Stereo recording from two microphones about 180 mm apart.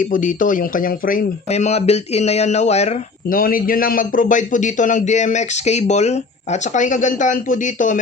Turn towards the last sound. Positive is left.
turn(degrees=45)  # may be behind; listen again after turning